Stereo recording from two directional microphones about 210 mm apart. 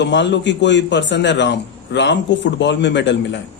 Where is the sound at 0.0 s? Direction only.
55° left (ahead or behind).